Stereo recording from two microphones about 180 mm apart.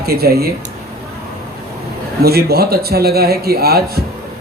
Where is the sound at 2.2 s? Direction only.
60° right (ahead or behind).